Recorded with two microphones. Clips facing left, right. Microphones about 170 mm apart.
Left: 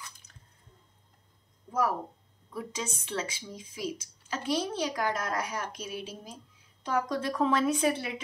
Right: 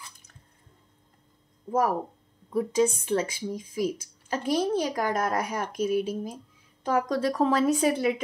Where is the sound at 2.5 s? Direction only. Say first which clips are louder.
Right 13 dB; 50° right (ahead or behind).